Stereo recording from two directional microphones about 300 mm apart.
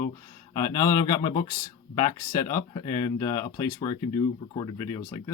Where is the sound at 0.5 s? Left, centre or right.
Centre.